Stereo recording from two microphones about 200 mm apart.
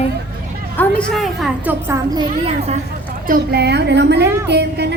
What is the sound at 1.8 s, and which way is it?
Speech, 15° right (ahead or behind).